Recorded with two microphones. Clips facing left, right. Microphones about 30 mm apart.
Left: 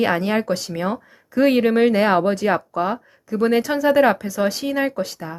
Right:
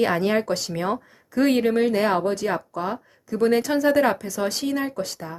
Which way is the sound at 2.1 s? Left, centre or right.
Left.